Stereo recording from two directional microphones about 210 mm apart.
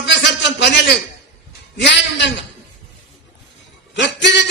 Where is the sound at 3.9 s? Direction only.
55° left (ahead or behind).